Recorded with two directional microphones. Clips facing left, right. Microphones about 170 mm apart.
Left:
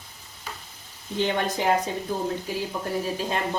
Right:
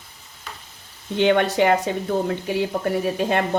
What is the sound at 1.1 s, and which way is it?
Speech, 70° right (ahead or behind).